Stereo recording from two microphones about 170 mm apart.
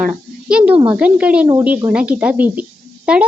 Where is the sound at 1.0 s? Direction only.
10° right (ahead or behind).